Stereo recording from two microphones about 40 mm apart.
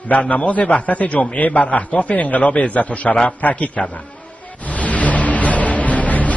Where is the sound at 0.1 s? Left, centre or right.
Left.